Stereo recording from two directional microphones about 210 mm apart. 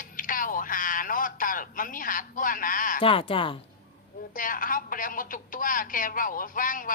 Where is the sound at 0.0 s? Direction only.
40° left (ahead or behind).